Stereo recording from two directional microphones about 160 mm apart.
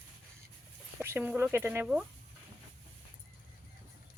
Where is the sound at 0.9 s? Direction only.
15° right (ahead or behind).